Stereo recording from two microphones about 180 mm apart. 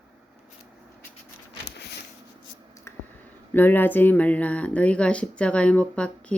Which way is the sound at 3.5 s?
10° left (ahead or behind).